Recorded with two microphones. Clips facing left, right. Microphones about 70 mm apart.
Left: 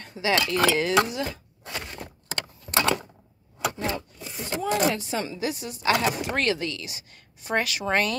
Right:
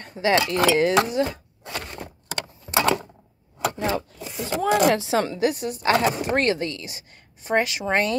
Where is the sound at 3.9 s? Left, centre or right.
Right.